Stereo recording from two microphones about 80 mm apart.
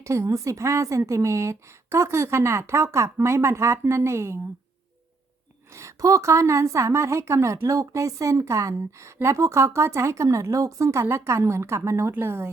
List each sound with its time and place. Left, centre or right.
0.0 s a woman's voice: right
5.7 s a woman's voice: right